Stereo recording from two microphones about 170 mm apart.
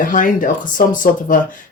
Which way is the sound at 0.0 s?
50° left (ahead or behind).